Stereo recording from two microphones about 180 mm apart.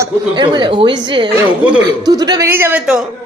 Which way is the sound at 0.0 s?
25° right (ahead or behind).